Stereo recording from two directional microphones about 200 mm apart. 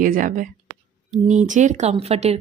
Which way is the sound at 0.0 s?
45° right (ahead or behind).